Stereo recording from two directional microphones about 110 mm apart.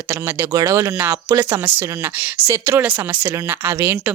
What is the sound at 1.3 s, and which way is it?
Speech, 40° right (ahead or behind).